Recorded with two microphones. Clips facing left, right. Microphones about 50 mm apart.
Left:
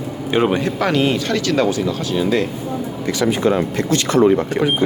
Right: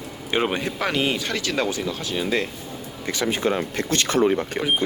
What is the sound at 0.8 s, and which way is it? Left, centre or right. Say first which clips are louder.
Speech: left 5 dB; centre.